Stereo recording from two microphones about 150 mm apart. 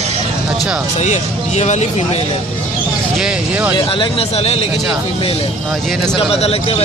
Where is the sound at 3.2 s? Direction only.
5° right (ahead or behind).